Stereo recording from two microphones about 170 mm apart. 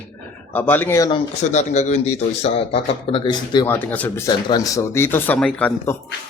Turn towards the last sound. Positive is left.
turn(degrees=10)  # may be behind; listen again after turning